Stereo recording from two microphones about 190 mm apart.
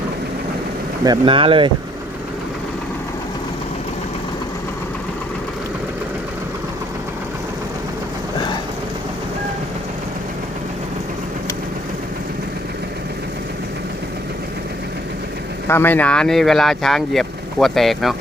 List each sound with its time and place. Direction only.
1.0 s speech: 25° right (ahead or behind)
15.6 s speech: 10° left (ahead or behind)